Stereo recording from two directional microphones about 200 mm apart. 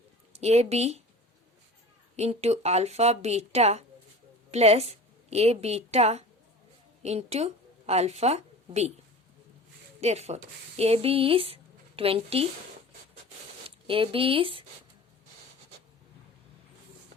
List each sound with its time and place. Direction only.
0.3 s a woman's voice: 30° right (ahead or behind)
2.1 s a woman's voice: 35° right (ahead or behind)
10.0 s speech: 35° right (ahead or behind)
13.7 s speech: 25° right (ahead or behind)